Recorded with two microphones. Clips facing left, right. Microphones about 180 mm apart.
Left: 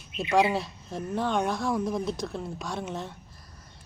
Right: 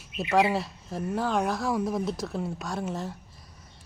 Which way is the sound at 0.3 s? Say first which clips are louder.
Even; centre (ahead or behind).